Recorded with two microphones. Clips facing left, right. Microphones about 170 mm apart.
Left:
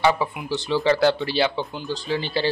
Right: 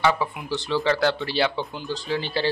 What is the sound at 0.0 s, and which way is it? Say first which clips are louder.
Speech: left 2 dB; 10° left (ahead or behind).